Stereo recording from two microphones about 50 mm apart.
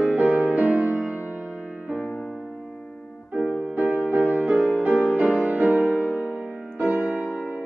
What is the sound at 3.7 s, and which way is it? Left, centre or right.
Music, right.